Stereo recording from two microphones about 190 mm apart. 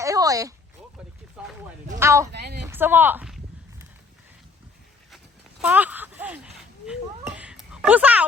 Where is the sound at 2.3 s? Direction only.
55° right (ahead or behind).